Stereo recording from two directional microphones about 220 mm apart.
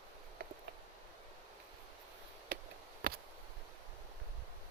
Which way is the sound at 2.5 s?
40° right (ahead or behind).